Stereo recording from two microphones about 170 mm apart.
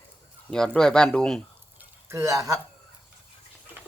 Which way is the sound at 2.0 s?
20° right (ahead or behind).